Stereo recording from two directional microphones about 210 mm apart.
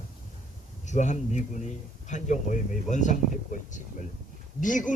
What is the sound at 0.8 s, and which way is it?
A man's voice, 35° left (ahead or behind).